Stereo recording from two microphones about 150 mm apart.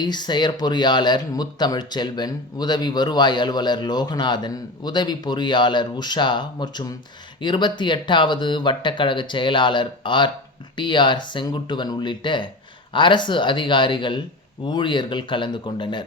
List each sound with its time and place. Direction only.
0.0 s speech: 30° left (ahead or behind)